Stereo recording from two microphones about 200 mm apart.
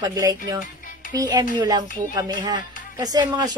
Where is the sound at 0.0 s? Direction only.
20° right (ahead or behind).